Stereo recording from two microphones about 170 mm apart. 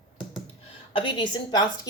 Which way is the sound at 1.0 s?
30° left (ahead or behind).